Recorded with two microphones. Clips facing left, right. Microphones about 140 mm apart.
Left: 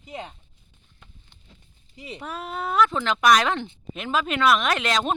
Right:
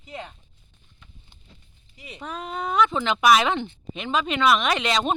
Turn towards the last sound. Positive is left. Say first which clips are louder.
# right 1 dB
turn(degrees=0)  # may be behind; listen again after turning